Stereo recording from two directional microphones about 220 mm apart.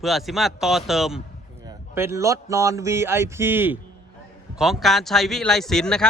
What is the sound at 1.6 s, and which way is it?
Speech, 10° right (ahead or behind).